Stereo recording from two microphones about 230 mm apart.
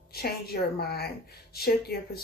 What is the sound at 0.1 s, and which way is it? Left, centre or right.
A woman's voice, left.